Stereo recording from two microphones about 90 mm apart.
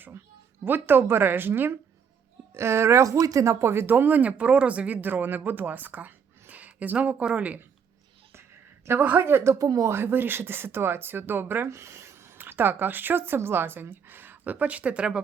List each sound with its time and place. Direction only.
0.6 s speech: 25° right (ahead or behind)
9.0 s speech: 20° right (ahead or behind)